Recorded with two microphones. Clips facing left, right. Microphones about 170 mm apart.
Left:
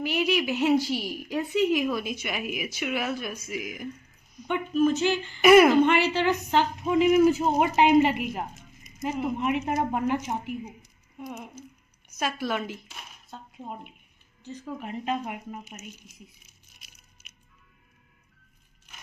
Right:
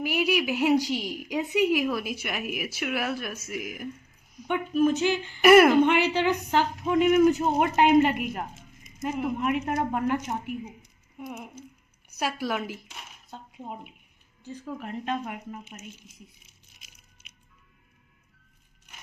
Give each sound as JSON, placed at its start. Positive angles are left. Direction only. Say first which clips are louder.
{"t": 0.0, "sound": "a woman's voice", "louder": "even", "side_deg": -10}
{"t": 6.8, "sound": "speech", "louder": "even", "side_deg": 5}
{"t": 11.2, "sound": "a woman's voice", "louder": "even", "side_deg": -5}
{"t": 14.6, "sound": "speech", "louder": "even", "side_deg": 5}
{"t": 15.6, "sound": "speech", "louder": "even", "side_deg": -30}